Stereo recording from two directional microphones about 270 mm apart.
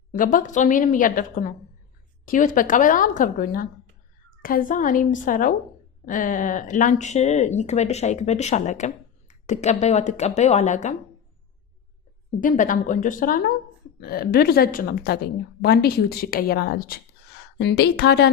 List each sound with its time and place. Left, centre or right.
0.1 s speech: left
12.4 s a woman's voice: left